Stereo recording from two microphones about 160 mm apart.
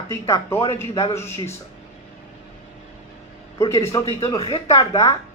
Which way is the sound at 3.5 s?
15° left (ahead or behind).